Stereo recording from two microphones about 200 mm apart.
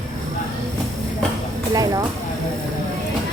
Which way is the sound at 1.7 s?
20° right (ahead or behind).